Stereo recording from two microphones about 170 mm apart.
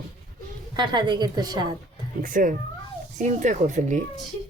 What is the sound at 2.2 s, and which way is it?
Speech, 50° right (ahead or behind).